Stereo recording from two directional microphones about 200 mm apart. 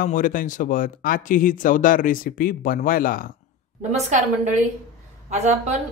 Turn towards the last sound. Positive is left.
turn(degrees=-35)  # may be behind; listen again after turning